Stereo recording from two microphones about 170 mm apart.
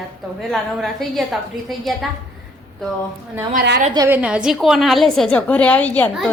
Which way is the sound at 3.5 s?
70° right (ahead or behind).